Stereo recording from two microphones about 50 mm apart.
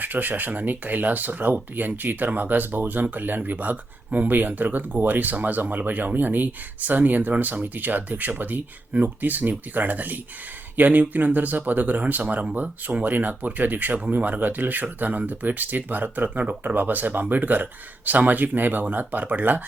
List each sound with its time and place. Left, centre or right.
0.0 s speech: right